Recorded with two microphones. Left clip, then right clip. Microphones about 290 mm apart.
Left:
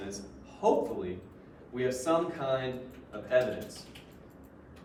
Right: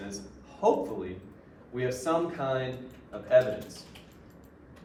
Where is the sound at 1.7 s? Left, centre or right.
Centre.